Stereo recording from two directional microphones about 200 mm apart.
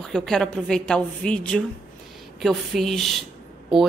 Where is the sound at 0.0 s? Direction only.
Centre (ahead or behind).